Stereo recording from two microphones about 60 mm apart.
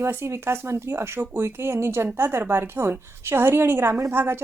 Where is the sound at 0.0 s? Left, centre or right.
Right.